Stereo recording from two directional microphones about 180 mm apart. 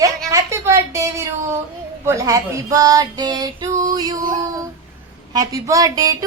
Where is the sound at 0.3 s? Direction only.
15° right (ahead or behind).